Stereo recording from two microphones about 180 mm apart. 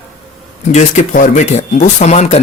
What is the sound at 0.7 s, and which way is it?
Speech, 45° left (ahead or behind).